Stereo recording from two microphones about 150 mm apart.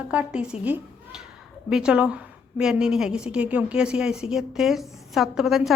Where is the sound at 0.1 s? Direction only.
10° right (ahead or behind).